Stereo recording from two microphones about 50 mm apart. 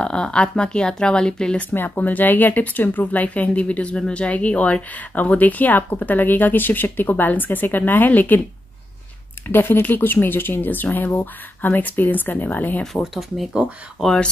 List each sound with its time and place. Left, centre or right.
0.0 s speech: centre
1.7 s speech: left
9.5 s speech: left
12.8 s speech: centre